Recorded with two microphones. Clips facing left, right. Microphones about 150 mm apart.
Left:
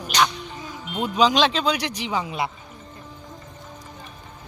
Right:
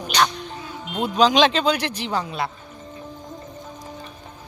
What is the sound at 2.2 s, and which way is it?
Speech, 20° left (ahead or behind).